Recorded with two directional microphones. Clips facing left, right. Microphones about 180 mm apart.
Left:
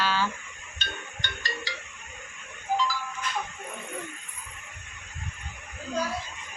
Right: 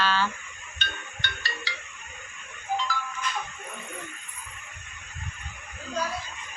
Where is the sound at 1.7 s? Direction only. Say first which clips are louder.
Left 1 dB; 40° left (ahead or behind).